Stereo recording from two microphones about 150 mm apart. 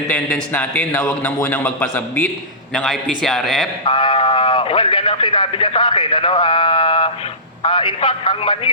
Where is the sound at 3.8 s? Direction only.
35° left (ahead or behind).